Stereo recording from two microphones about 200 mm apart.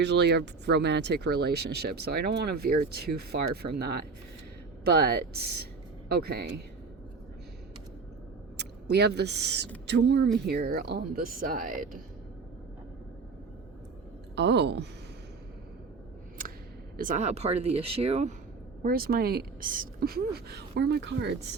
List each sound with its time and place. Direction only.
0.0 s speech: 60° right (ahead or behind)
8.5 s a woman's voice: 55° right (ahead or behind)
14.3 s a woman's voice: 60° right (ahead or behind)
17.0 s speech: 40° right (ahead or behind)
18.8 s speech: 45° right (ahead or behind)